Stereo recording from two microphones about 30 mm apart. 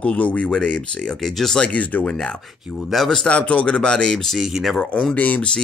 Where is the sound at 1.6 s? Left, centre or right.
Left.